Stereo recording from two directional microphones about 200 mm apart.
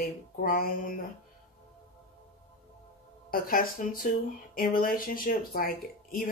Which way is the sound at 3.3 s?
45° left (ahead or behind).